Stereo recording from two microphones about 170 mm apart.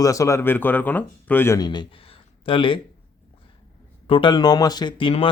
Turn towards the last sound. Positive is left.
turn(degrees=30)  # may be behind; listen again after turning